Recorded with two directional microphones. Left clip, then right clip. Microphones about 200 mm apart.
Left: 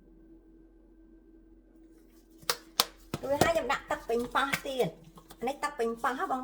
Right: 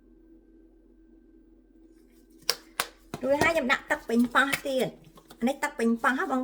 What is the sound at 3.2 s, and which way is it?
Speech, 50° right (ahead or behind).